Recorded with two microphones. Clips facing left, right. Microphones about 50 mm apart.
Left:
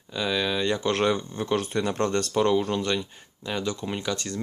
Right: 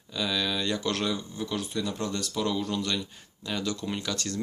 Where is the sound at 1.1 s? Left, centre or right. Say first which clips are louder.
Left 6 dB; left.